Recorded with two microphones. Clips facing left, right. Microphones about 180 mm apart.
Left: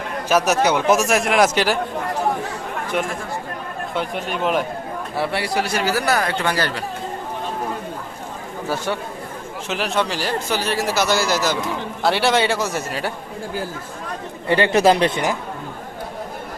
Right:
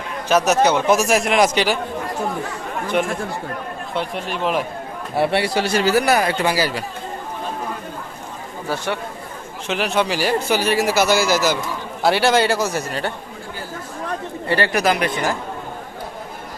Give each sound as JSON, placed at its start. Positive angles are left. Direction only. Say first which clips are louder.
{"t": 0.3, "sound": "speech", "louder": "right 2 dB", "side_deg": 10}
{"t": 0.9, "sound": "speech", "louder": "even", "side_deg": 0}
{"t": 3.9, "sound": "speech", "louder": "even", "side_deg": 0}
{"t": 5.1, "sound": "speech", "louder": "right 4 dB", "side_deg": -25}
{"t": 9.6, "sound": "speech", "louder": "right 2 dB", "side_deg": 0}
{"t": 14.4, "sound": "speech", "louder": "left 4 dB", "side_deg": 20}